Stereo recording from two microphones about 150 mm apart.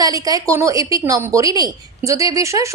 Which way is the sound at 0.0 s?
25° right (ahead or behind).